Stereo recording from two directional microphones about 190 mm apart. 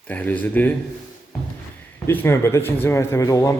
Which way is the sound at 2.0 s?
10° left (ahead or behind).